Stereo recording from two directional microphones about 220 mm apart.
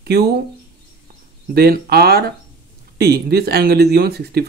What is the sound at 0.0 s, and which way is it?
Speech, 45° right (ahead or behind).